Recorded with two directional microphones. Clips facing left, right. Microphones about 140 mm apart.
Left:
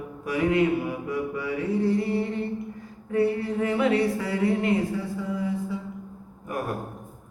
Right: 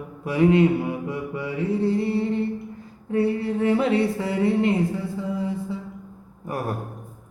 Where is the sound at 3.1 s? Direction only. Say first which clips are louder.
Right 1 dB; 25° right (ahead or behind).